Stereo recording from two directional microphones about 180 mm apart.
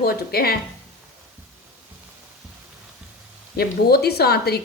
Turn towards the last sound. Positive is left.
turn(degrees=60)  # may be behind; listen again after turning